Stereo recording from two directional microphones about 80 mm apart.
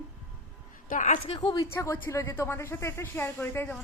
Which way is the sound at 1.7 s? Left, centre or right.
Left.